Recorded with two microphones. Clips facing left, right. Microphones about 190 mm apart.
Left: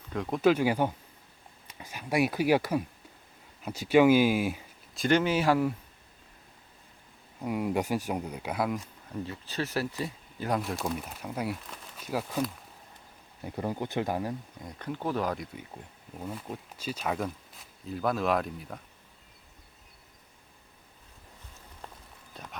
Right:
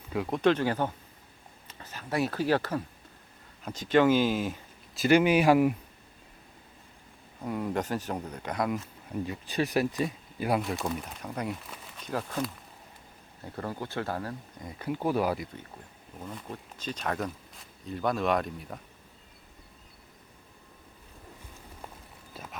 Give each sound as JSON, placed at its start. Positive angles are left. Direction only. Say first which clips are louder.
{"t": 0.1, "sound": "speech", "louder": "even", "side_deg": 0}
{"t": 4.9, "sound": "speech", "louder": "right 3 dB", "side_deg": -10}
{"t": 7.4, "sound": "speech", "louder": "left 2 dB", "side_deg": 10}
{"t": 9.2, "sound": "speech", "louder": "right 5 dB", "side_deg": -15}
{"t": 10.6, "sound": "speech", "louder": "right 1 dB", "side_deg": 0}
{"t": 14.6, "sound": "speech", "louder": "right 5 dB", "side_deg": -5}
{"t": 16.2, "sound": "speech", "louder": "left 2 dB", "side_deg": 10}
{"t": 22.3, "sound": "a sound", "louder": "right 1 dB", "side_deg": -5}